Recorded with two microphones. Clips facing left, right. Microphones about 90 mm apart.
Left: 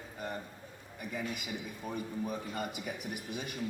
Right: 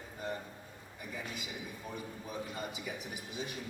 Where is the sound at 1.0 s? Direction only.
60° left (ahead or behind).